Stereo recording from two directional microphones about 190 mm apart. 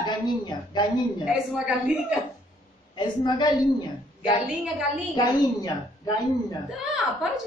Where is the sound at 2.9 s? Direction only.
20° left (ahead or behind).